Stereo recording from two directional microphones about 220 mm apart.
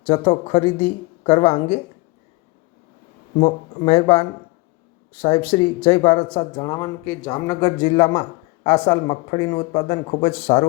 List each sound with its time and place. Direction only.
0.1 s speech: 20° left (ahead or behind)
3.4 s speech: 30° left (ahead or behind)